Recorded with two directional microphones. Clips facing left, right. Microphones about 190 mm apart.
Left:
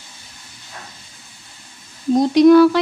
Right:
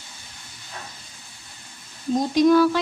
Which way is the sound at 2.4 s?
70° left (ahead or behind).